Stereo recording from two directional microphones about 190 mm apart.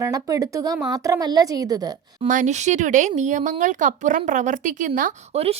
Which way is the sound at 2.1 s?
40° right (ahead or behind).